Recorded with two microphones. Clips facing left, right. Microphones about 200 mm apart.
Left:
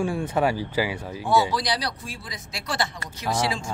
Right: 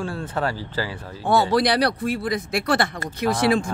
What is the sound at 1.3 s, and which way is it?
Speech, 60° right (ahead or behind).